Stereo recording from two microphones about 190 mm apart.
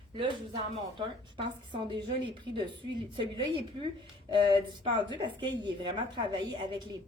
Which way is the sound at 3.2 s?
25° right (ahead or behind).